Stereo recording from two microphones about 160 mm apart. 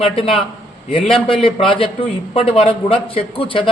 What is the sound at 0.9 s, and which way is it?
Speech, centre (ahead or behind).